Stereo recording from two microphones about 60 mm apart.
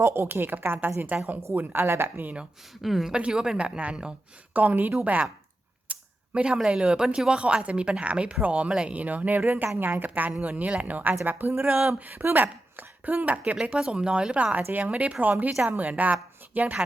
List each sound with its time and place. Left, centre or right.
0.0 s speech: right
2.8 s speech: centre
3.1 s speech: centre
4.5 s speech: right
5.9 s a sound: centre
6.7 s speech: centre
13.6 s speech: centre